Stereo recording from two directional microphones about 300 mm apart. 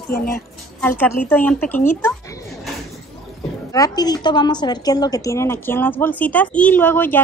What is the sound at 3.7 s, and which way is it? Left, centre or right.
A woman's voice, centre.